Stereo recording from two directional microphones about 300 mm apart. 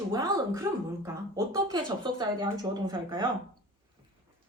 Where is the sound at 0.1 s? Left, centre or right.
Centre.